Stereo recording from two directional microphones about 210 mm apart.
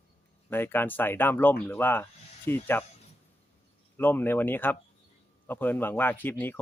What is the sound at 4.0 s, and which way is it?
Speech, 10° left (ahead or behind).